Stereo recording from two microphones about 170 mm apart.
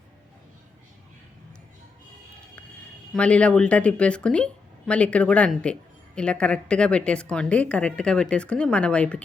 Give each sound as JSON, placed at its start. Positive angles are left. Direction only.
{"t": 3.1, "sound": "a woman's voice", "side_deg": 5}